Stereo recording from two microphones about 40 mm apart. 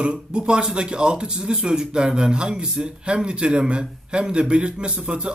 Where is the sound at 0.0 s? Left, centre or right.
Right.